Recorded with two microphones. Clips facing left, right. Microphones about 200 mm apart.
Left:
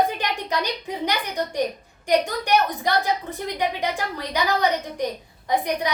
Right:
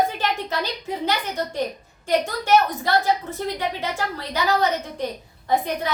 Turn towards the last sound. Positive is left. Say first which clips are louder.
# even
turn(degrees=15)  # may be behind; listen again after turning